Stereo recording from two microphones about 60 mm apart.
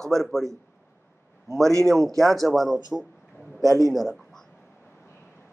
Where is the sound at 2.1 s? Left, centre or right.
Centre.